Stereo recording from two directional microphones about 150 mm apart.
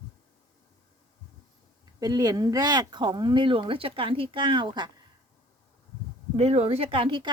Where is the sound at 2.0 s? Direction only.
25° right (ahead or behind).